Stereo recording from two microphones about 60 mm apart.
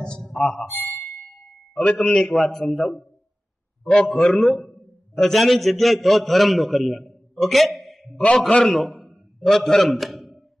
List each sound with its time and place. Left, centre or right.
0.0 s speech: centre
0.3 s speech: centre
0.7 s a sound: left
1.0 s ding: centre
2.0 s a man's voice: centre
7.8 s a sound: centre
8.4 s a man's voice: centre